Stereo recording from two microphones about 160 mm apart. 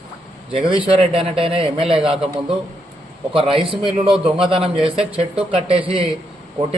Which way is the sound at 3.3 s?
30° right (ahead or behind).